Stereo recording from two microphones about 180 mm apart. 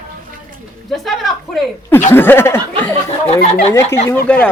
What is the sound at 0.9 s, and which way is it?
Speech, centre (ahead or behind).